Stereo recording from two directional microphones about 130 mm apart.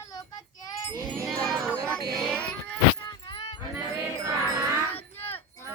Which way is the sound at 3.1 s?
35° left (ahead or behind).